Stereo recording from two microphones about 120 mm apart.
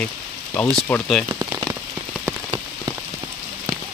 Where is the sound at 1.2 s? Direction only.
20° right (ahead or behind).